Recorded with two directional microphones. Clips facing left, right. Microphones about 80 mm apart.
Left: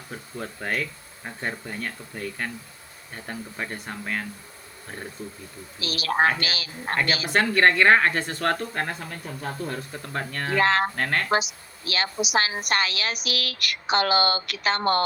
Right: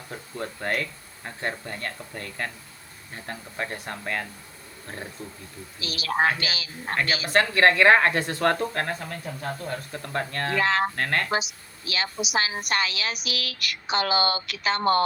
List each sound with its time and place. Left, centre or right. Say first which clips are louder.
0.1 s speech: right 1 dB; centre
5.8 s a woman's voice: left 2 dB; left
6.9 s speech: even; centre
10.6 s a woman's voice: left 3 dB; left
10.9 s speech: even; centre
11.9 s a woman's voice: left 3 dB; left